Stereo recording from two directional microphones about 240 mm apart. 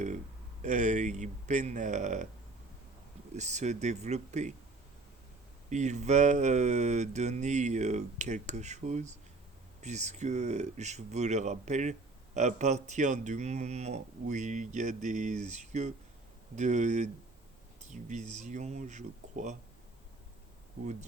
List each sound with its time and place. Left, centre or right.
0.6 s speech: right
3.3 s speech: right
5.6 s speech: right